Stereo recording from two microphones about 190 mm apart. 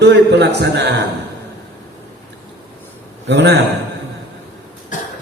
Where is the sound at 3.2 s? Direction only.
65° right (ahead or behind).